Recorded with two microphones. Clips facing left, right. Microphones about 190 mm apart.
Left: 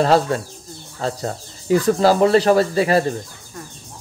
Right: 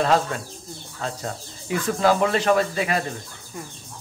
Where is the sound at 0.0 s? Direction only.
35° left (ahead or behind).